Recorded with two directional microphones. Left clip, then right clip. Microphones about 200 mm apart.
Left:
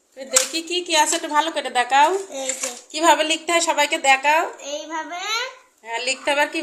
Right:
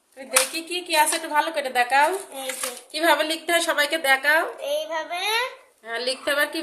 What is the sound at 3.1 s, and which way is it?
A woman's voice, 10° right (ahead or behind).